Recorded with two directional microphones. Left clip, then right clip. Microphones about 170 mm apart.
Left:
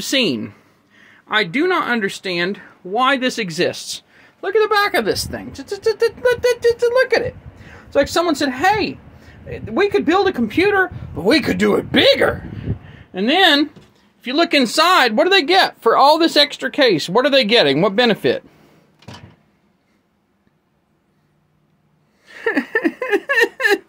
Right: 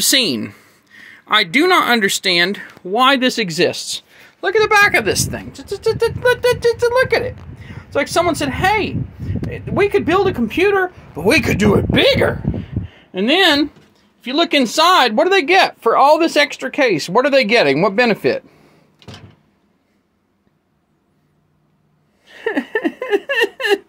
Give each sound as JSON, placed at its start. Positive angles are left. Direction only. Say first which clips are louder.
{"t": 0.0, "sound": "speech", "louder": "right 3 dB", "side_deg": -20}
{"t": 4.4, "sound": "a woman's voice", "louder": "right 3 dB", "side_deg": -15}
{"t": 22.2, "sound": "a sound", "louder": "left 1 dB", "side_deg": 10}